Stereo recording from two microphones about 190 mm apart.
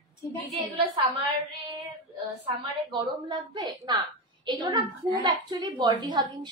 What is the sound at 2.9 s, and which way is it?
A woman's voice, 25° right (ahead or behind).